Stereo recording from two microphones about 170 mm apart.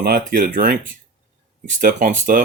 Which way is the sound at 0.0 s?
60° right (ahead or behind).